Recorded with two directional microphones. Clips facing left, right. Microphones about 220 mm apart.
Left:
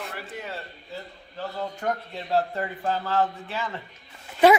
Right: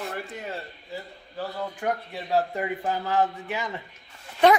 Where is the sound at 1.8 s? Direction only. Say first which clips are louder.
Right 2 dB; 10° right (ahead or behind).